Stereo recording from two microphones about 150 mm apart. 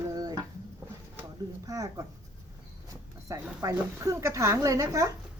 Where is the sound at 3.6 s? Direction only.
20° right (ahead or behind).